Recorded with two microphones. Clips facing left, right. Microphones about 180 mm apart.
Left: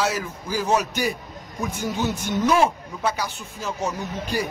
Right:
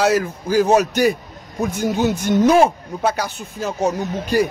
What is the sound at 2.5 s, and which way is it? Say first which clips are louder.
Speech: right 6 dB; 40° right (ahead or behind).